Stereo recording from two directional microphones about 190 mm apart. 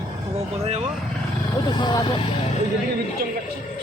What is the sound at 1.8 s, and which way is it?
Speech, 25° left (ahead or behind).